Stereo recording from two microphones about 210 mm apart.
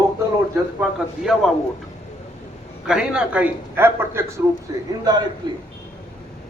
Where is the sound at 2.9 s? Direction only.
5° right (ahead or behind); by 5.6 s 20° right (ahead or behind).